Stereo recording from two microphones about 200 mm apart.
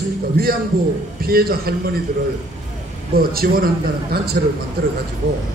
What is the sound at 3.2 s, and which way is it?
A man's voice, 50° right (ahead or behind).